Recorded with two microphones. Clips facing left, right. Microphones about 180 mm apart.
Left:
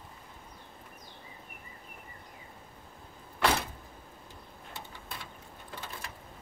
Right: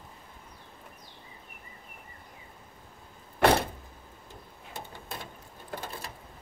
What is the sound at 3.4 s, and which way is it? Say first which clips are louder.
Vehicle: right 6 dB; 55° right (ahead or behind).